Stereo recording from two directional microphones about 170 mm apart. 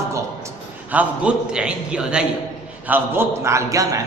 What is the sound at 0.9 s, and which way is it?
A man's voice, 5° right (ahead or behind).